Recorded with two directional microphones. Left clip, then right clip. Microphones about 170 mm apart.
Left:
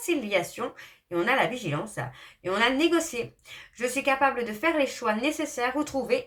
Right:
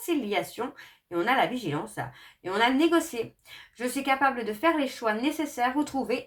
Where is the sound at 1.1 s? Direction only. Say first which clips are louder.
Even; 25° right (ahead or behind).